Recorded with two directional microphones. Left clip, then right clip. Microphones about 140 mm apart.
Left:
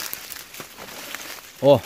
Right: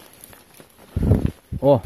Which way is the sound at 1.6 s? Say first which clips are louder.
Left 1 dB; 20° right (ahead or behind).